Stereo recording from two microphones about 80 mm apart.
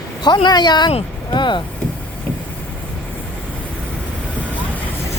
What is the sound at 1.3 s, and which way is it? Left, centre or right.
Speech, left.